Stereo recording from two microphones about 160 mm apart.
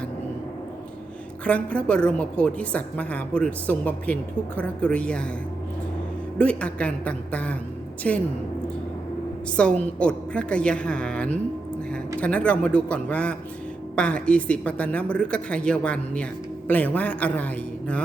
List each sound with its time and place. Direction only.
1.5 s a woman's voice: 5° left (ahead or behind)
6.4 s a woman's voice: 5° left (ahead or behind)
9.6 s a woman's voice: 5° left (ahead or behind)